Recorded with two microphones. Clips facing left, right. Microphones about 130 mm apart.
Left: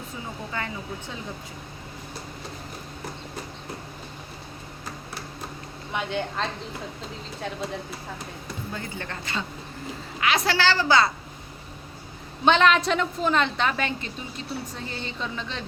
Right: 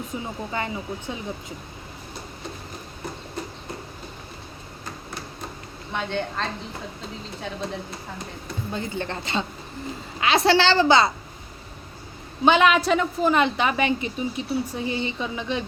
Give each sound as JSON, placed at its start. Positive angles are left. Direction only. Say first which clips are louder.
{"t": 0.5, "sound": "a woman's voice", "louder": "right 4 dB", "side_deg": -20}
{"t": 5.9, "sound": "a woman's voice", "louder": "right 1 dB", "side_deg": 5}
{"t": 7.6, "sound": "a woman's voice", "louder": "right 2 dB", "side_deg": 5}
{"t": 8.7, "sound": "a woman's voice", "louder": "right 7 dB", "side_deg": -25}
{"t": 12.5, "sound": "a woman's voice", "louder": "right 2 dB", "side_deg": -5}